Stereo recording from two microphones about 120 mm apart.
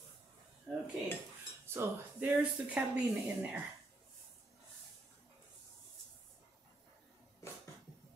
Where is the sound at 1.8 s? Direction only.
20° right (ahead or behind).